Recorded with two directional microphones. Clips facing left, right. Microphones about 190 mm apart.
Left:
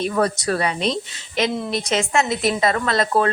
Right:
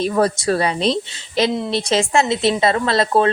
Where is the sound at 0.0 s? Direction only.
30° right (ahead or behind).